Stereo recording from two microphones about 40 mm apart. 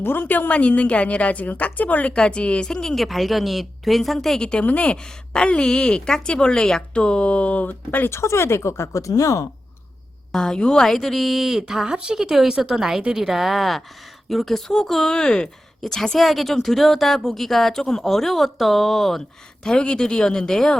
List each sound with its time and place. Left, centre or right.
0.0 s a woman's voice: left
2.1 s a woman's voice: left
2.9 s speech: centre
4.4 s a woman's voice: centre
4.6 s a woman's voice: left
8.1 s speech: left
10.3 s a woman's voice: centre
10.8 s a woman's voice: centre; by 12.8 s right
13.1 s speech: centre
19.6 s a woman's voice: left